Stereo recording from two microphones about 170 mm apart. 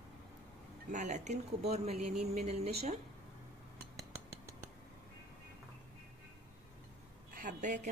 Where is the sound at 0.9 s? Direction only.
45° right (ahead or behind).